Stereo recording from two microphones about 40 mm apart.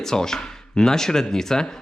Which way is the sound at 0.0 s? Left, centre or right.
Centre.